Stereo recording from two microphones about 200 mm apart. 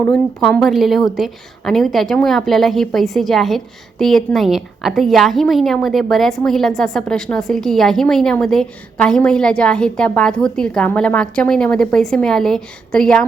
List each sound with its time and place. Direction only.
0.0 s a woman's voice: 5° left (ahead or behind)